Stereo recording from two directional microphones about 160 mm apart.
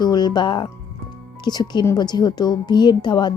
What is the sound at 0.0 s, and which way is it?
Speech, 25° left (ahead or behind).